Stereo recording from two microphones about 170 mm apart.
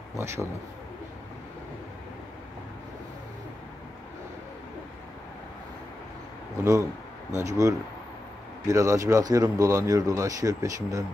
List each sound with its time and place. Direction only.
0.2 s speech: 15° right (ahead or behind)
6.6 s speech: 15° right (ahead or behind)